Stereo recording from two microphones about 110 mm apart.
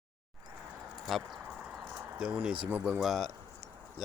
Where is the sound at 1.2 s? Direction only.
5° right (ahead or behind).